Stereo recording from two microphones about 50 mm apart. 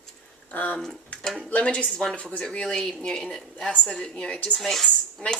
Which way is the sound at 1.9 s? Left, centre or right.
Centre.